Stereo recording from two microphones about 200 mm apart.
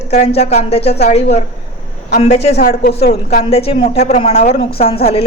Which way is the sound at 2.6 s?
50° left (ahead or behind).